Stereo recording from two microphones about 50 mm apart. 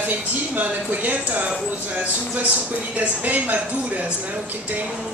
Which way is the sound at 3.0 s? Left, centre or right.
Right.